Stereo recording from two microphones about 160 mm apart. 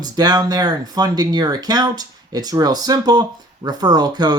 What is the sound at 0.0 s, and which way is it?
Speech, 25° right (ahead or behind).